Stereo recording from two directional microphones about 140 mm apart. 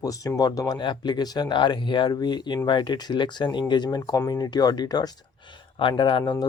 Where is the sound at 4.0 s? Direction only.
20° left (ahead or behind).